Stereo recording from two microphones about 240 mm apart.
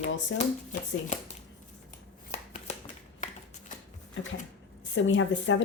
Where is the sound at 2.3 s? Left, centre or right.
Left.